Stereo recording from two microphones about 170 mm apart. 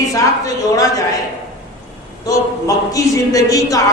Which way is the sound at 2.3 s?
20° left (ahead or behind).